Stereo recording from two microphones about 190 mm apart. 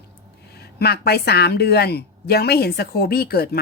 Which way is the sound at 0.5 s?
55° left (ahead or behind).